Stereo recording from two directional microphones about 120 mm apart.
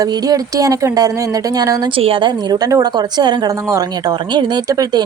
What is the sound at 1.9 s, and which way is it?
Speech, 50° right (ahead or behind).